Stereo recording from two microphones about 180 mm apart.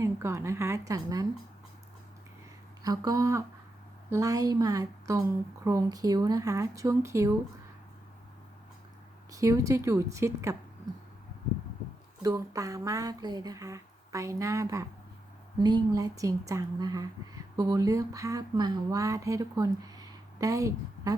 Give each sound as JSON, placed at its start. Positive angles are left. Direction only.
{"t": 0.0, "sound": "speech", "side_deg": -15}
{"t": 2.8, "sound": "speech", "side_deg": -20}
{"t": 9.3, "sound": "speech", "side_deg": -15}
{"t": 12.2, "sound": "speech", "side_deg": -20}